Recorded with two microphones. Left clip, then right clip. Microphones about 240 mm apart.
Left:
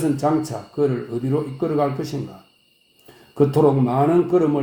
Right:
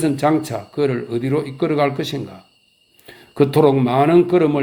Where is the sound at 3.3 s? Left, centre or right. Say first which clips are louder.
Right 3 dB; right.